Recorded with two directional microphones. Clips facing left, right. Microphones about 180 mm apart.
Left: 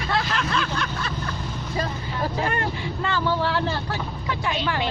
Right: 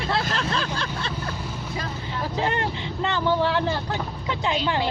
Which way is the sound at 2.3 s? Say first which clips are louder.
Right 4 dB; 20° right (ahead or behind).